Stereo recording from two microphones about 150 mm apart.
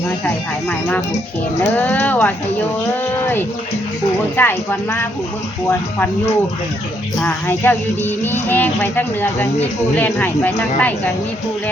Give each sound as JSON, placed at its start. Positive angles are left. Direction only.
{"t": 0.3, "sound": "speech", "side_deg": 10}
{"t": 4.4, "sound": "speech", "side_deg": 15}